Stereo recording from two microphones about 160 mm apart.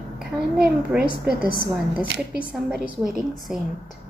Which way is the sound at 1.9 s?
85° right.